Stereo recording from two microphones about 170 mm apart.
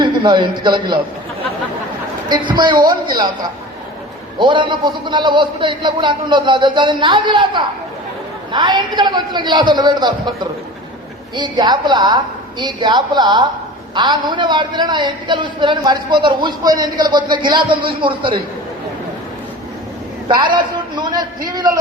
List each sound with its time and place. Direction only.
0.0 s a man's voice: 25° right (ahead or behind)
2.3 s a man's voice: 25° right (ahead or behind)
4.4 s a man's voice: 30° right (ahead or behind)
20.2 s a man's voice: 30° right (ahead or behind)